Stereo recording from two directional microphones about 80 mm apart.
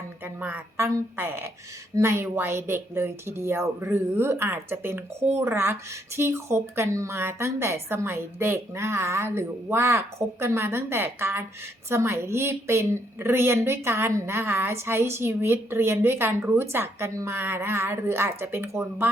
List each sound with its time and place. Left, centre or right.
0.3 s speech: right
17.1 s speech: right
17.3 s speech: right